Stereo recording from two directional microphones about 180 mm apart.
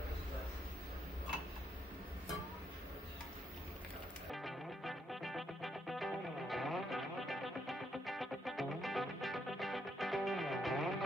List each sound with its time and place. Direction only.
4.3 s music: centre (ahead or behind)